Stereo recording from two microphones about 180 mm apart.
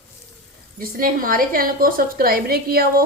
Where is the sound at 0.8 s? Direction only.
50° right (ahead or behind).